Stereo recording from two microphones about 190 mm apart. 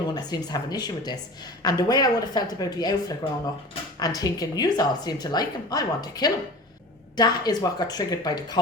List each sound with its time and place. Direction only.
0.1 s a woman's voice: 20° left (ahead or behind)